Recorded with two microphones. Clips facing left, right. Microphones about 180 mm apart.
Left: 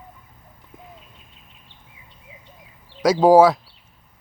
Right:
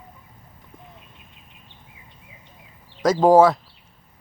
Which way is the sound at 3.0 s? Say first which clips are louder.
Left 1 dB; 10° left (ahead or behind).